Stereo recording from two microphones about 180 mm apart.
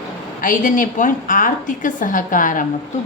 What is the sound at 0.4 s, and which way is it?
A woman's voice, 45° left (ahead or behind).